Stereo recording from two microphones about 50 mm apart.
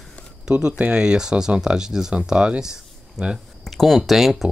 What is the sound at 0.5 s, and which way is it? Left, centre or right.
Speech, centre.